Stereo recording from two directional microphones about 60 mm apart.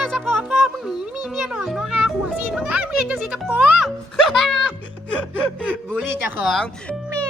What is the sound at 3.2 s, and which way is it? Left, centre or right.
Speech, right.